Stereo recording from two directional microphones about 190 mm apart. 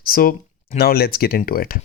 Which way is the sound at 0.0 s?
50° left (ahead or behind).